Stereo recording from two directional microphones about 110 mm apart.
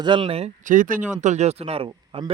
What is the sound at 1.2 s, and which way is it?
Speech, 90° right.